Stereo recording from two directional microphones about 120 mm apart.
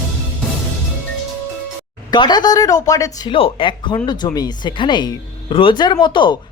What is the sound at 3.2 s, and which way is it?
Speech, 45° left (ahead or behind).